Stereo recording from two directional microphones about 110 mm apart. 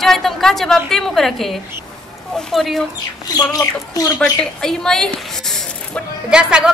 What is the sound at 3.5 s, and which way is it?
Speech, 35° left (ahead or behind).